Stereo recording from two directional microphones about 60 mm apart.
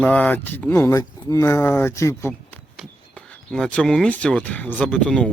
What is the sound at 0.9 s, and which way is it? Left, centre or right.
Speech, left.